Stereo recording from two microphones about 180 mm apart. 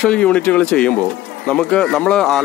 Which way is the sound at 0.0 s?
5° left (ahead or behind).